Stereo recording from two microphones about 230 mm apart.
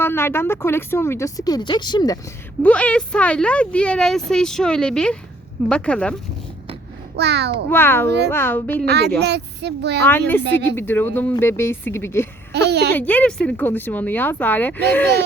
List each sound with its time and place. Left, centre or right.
0.0 s speech: centre
2.6 s speech: centre
7.2 s speech: right
7.7 s speech: centre
8.8 s speech: right
10.0 s speech: centre
12.5 s speech: right
12.9 s speech: centre